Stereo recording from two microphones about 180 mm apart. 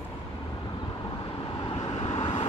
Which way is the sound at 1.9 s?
35° left (ahead or behind).